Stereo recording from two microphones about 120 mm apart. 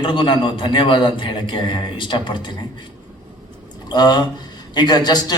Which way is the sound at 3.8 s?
35° left (ahead or behind).